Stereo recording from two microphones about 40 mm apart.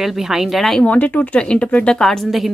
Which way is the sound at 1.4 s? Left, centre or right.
Left.